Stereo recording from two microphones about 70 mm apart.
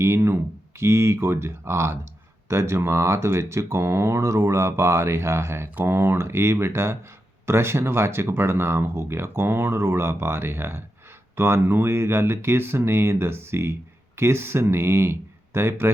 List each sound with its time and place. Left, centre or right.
0.0 s speech: right